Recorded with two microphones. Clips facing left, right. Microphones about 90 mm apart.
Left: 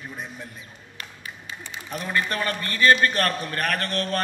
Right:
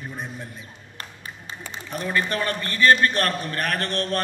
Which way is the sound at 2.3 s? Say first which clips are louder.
Right 1 dB; 40° right (ahead or behind).